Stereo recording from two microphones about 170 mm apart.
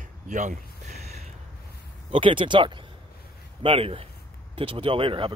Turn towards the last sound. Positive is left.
turn(degrees=-30)  # may be behind; listen again after turning